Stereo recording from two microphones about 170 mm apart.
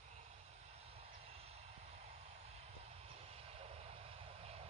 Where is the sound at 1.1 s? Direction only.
35° right (ahead or behind).